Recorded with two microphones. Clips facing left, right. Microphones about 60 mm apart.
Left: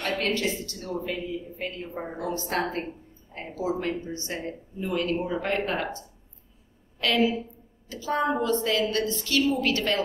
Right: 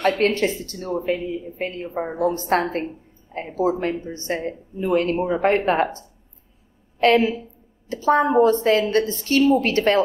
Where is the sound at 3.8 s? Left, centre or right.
Right.